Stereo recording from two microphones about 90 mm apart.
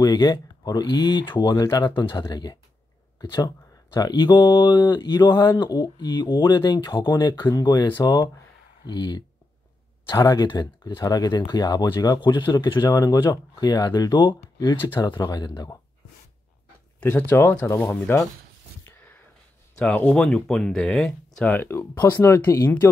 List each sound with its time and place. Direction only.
0.0 s speech: 50° left (ahead or behind)
3.4 s a sound: 45° left (ahead or behind)
4.1 s speech: 55° left (ahead or behind)
12.2 s speech: 60° left (ahead or behind)
12.8 s speech: 40° left (ahead or behind)
14.1 s speech: 55° left (ahead or behind)
17.0 s speech: 25° left (ahead or behind)
18.9 s a sound: 20° left (ahead or behind)
20.2 s speech: 5° left (ahead or behind)
21.5 s speech: 25° left (ahead or behind)
21.9 s speech: 45° left (ahead or behind)
22.2 s speech: 30° left (ahead or behind)